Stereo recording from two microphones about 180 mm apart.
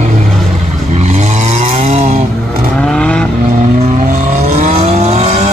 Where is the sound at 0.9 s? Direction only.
40° right (ahead or behind).